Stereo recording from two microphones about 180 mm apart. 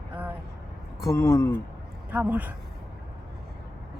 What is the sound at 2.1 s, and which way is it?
Speech, 10° right (ahead or behind).